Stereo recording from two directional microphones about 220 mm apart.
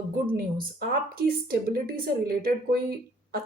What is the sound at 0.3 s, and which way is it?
A woman's voice, 40° right (ahead or behind).